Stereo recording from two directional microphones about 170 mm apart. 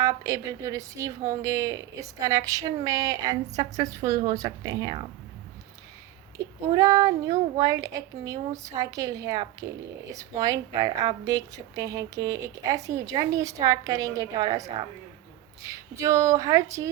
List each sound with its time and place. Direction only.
0.0 s speech: 20° right (ahead or behind)
6.7 s speech: 20° right (ahead or behind)